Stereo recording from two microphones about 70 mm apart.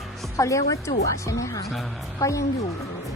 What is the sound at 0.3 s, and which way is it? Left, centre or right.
A woman's voice, left.